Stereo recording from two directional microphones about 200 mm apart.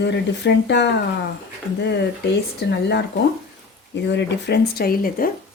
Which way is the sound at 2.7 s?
60° left (ahead or behind).